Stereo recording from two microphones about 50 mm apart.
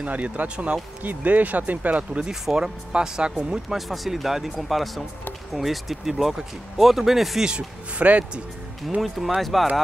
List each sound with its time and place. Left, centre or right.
0.0 s speech: right
2.4 s speech: centre
3.7 s speech: centre
8.0 s speech: right
9.4 s speech: centre